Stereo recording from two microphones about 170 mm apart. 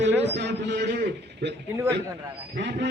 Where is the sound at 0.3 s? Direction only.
90° right.